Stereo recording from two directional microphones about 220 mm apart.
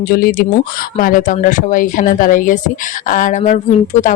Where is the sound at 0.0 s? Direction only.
40° left (ahead or behind).